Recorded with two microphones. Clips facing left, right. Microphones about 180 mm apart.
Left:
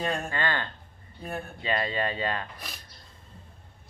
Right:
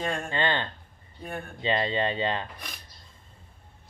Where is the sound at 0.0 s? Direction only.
Centre (ahead or behind).